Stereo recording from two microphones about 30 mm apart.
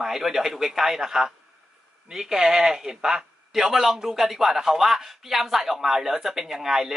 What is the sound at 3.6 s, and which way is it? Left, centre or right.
Speech, centre.